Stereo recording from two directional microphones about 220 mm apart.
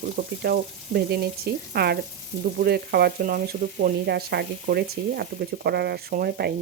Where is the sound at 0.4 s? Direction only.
45° right (ahead or behind).